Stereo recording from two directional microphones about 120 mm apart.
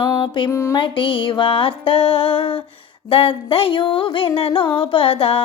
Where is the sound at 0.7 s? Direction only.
45° left (ahead or behind).